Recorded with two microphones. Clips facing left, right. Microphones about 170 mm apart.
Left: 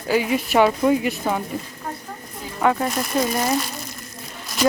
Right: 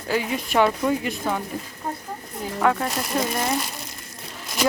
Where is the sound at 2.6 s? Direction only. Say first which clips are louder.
Left 2 dB; 10° left (ahead or behind).